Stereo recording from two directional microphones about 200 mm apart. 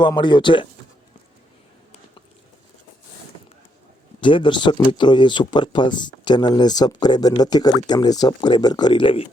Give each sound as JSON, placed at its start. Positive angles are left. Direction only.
{"t": 0.0, "sound": "speech", "side_deg": 25}
{"t": 4.2, "sound": "speech", "side_deg": 25}